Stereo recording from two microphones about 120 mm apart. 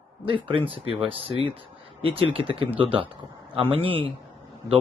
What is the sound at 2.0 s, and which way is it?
Speech, 50° right (ahead or behind).